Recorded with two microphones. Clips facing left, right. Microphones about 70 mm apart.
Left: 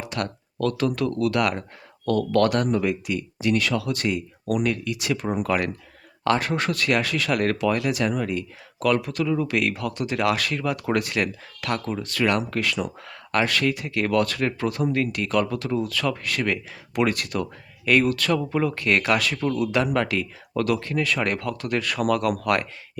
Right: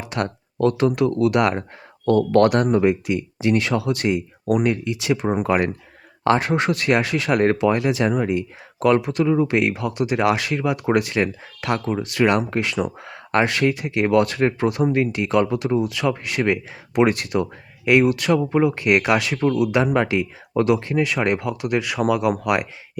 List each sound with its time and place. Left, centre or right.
0.1 s speech: right